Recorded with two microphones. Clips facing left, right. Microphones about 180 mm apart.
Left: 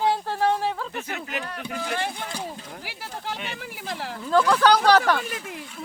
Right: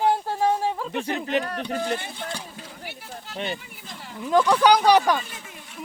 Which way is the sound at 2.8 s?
90° left.